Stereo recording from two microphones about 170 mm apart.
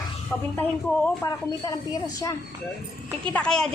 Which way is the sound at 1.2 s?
20° left (ahead or behind).